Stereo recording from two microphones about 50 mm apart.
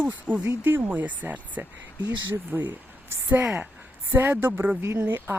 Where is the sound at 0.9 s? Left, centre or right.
Right.